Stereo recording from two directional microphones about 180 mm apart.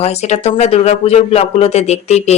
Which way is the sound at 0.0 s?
35° left (ahead or behind).